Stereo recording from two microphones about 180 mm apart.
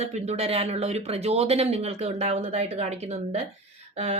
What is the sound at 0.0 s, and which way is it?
Speech, 35° right (ahead or behind).